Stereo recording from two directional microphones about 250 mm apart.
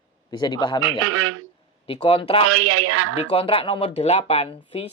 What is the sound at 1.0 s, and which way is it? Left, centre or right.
Speech, right.